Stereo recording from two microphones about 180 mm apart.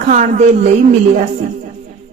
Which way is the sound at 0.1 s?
40° right (ahead or behind).